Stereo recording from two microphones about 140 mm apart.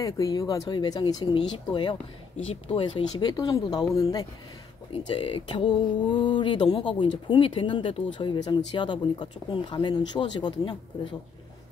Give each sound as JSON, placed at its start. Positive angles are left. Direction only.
{"t": 0.0, "sound": "speech", "side_deg": 25}
{"t": 4.9, "sound": "speech", "side_deg": 40}